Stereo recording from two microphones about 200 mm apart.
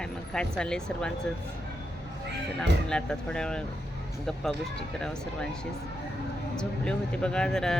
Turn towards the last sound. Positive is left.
turn(degrees=5)  # may be behind; listen again after turning